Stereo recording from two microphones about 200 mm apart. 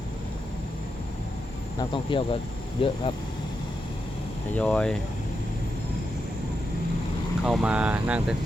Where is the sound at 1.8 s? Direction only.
25° left (ahead or behind).